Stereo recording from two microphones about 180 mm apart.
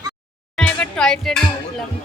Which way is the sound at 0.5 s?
5° left (ahead or behind).